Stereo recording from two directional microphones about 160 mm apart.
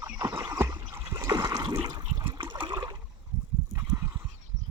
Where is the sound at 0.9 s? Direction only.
15° right (ahead or behind).